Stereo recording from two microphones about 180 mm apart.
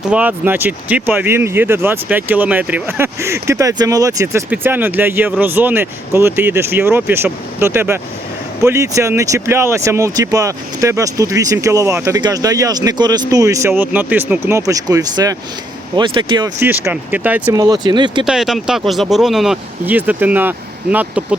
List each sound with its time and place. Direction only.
0.1 s speech: 10° right (ahead or behind); by 16.6 s 25° right (ahead or behind)
16.6 s speech: 10° right (ahead or behind)
17.6 s speech: 25° right (ahead or behind)
18.3 s speech: centre (ahead or behind)